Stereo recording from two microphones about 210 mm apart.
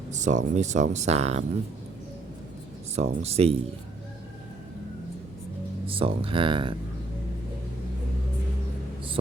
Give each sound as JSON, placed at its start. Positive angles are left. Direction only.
{"t": 0.1, "sound": "speech", "side_deg": -35}
{"t": 2.9, "sound": "speech", "side_deg": -30}
{"t": 5.9, "sound": "speech", "side_deg": -25}